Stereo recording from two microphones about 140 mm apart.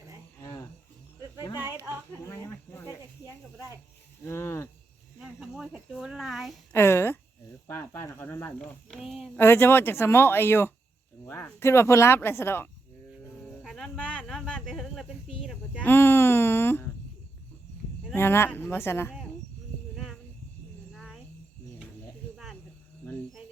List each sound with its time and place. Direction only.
0.4 s a sound: 25° left (ahead or behind)
1.5 s a sound: 15° right (ahead or behind)
2.2 s snake: 20° left (ahead or behind)
4.2 s speech: 20° left (ahead or behind)
5.2 s speech: 5° right (ahead or behind)
6.7 s speech: 15° left (ahead or behind)
8.5 s speech: centre (ahead or behind)
9.3 s speech: 15° left (ahead or behind)
13.4 s a sound: 5° left (ahead or behind)
15.8 s speech: 15° left (ahead or behind)
18.1 s speech: 15° left (ahead or behind)
20.9 s a sound: centre (ahead or behind)